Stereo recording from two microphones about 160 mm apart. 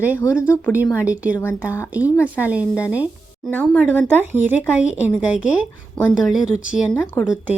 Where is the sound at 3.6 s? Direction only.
5° left (ahead or behind).